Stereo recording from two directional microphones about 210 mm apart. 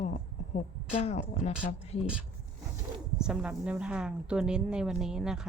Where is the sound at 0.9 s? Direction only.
30° left (ahead or behind).